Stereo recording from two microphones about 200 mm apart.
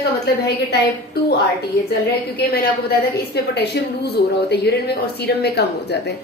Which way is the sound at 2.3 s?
50° left (ahead or behind).